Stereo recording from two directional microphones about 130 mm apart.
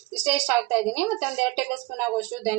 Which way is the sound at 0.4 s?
15° right (ahead or behind).